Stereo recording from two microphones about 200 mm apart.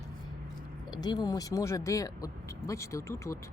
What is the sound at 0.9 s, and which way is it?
Speech, 20° left (ahead or behind).